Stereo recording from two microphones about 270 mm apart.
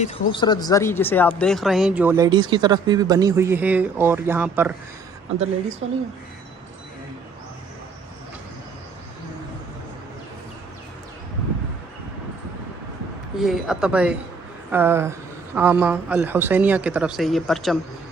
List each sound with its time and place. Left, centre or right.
0.0 s speech: centre
5.8 s speech: right
13.4 s speech: centre